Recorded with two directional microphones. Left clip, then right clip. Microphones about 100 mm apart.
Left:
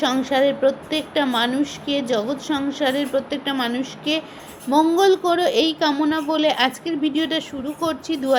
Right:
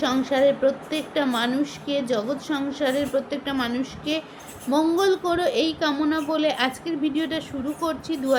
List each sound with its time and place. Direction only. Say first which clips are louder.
0.0 s a woman's voice: left 2 dB; 50° left (ahead or behind)